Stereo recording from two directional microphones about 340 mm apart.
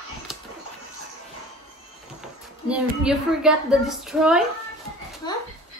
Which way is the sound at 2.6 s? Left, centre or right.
Centre.